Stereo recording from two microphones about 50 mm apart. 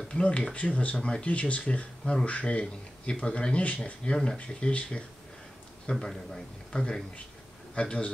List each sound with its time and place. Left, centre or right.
0.1 s speech: left
5.9 s a man's voice: centre